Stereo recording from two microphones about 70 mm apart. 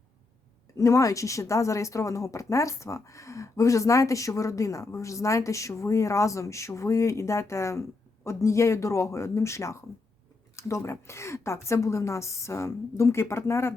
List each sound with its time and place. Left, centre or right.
0.8 s speech: left